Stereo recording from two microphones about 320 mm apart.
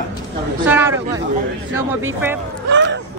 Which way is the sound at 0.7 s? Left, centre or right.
Centre.